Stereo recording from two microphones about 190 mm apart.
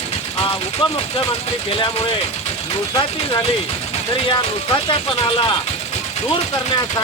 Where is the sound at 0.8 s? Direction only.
25° left (ahead or behind).